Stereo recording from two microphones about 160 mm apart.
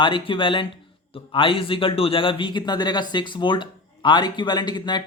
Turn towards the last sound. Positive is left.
turn(degrees=25)  # may be behind; listen again after turning